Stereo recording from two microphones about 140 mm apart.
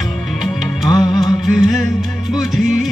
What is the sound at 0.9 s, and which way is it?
Music, 25° left (ahead or behind).